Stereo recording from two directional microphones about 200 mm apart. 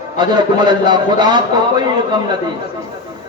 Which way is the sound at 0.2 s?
20° right (ahead or behind).